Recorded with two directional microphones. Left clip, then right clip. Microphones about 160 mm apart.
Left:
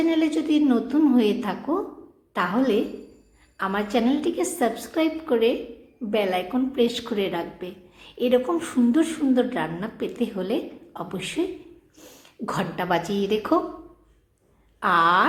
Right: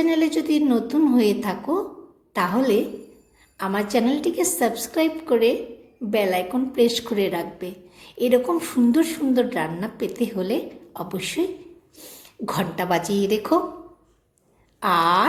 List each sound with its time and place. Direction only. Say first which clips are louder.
0.0 s a woman's voice: right 2 dB; 15° right (ahead or behind)
14.8 s a woman's voice: even; 15° right (ahead or behind)